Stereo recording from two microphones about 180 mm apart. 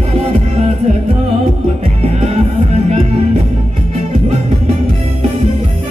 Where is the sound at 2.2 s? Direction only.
35° right (ahead or behind).